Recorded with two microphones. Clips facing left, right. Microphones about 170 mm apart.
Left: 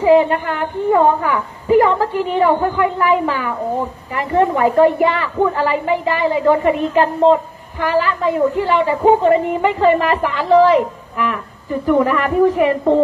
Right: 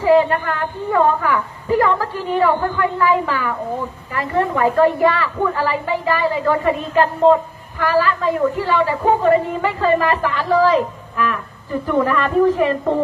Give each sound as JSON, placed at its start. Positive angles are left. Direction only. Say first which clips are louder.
{"t": 0.0, "sound": "a woman's voice", "louder": "left 2 dB", "side_deg": 20}